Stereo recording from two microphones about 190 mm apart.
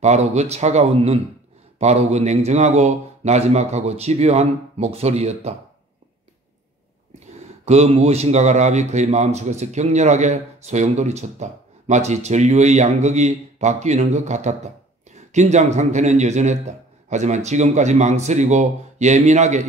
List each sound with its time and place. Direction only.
0.0 s a man's voice: 35° right (ahead or behind)
7.6 s a man's voice: 35° right (ahead or behind)